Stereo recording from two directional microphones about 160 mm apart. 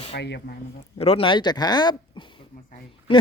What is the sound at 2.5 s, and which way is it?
Speech, 60° left (ahead or behind).